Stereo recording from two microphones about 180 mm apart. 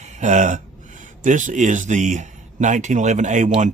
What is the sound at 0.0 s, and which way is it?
A man's voice, 40° right (ahead or behind).